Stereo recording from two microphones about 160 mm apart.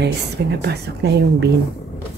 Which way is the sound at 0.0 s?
90° right.